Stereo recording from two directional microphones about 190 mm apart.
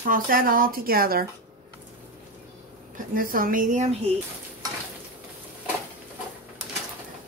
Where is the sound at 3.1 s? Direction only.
50° right (ahead or behind).